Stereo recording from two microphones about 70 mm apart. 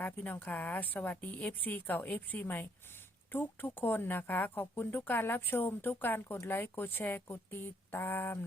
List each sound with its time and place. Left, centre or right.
0.0 s speech: left